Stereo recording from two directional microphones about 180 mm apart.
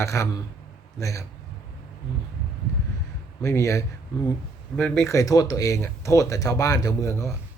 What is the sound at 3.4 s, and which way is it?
Speech, 15° left (ahead or behind).